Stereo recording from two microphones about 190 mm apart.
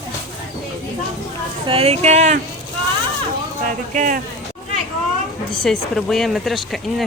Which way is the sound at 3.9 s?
45° right (ahead or behind).